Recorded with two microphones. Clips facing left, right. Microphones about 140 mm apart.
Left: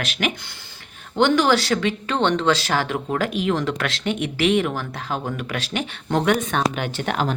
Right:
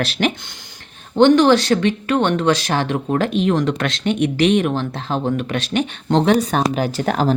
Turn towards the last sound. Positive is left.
turn(degrees=-40)  # may be behind; listen again after turning